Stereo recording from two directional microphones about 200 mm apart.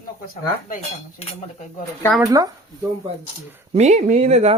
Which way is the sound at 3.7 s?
35° right (ahead or behind).